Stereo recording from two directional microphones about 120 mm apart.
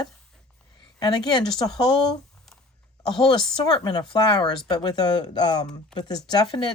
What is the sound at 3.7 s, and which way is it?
Speech, 35° left (ahead or behind).